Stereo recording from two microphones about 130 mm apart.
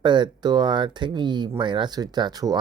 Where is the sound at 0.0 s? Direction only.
35° right (ahead or behind).